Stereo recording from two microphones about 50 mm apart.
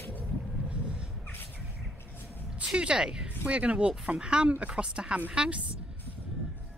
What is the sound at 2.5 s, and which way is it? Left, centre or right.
Speech, right.